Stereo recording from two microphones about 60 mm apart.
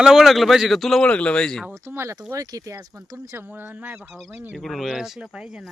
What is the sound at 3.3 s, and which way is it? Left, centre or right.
Speech, right.